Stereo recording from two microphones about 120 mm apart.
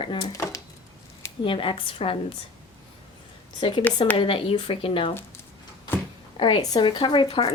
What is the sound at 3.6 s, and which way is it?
Speech, 40° left (ahead or behind).